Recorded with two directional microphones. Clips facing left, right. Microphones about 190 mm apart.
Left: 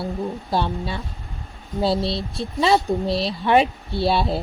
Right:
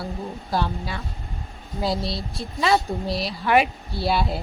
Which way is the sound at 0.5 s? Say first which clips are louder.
Left 1 dB; 25° left (ahead or behind).